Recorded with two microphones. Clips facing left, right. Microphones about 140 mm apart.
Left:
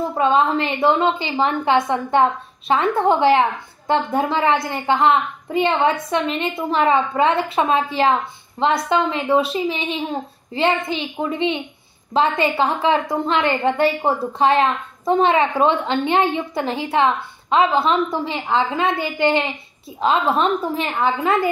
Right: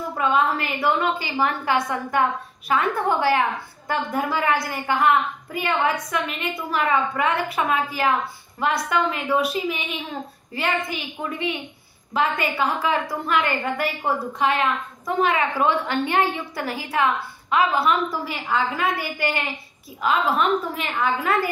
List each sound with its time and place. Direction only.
0.1 s a woman's voice: 30° left (ahead or behind)